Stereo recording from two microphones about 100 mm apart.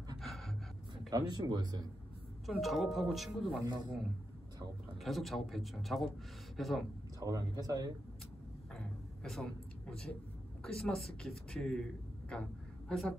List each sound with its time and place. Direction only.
0.2 s gasp: centre (ahead or behind)
1.1 s speech: 45° right (ahead or behind)
2.4 s speech: centre (ahead or behind)
3.6 s speech: 45° right (ahead or behind)
5.0 s speech: centre (ahead or behind)
7.2 s speech: 35° right (ahead or behind)
8.7 s a sound: 5° left (ahead or behind)
10.6 s speech: 5° left (ahead or behind)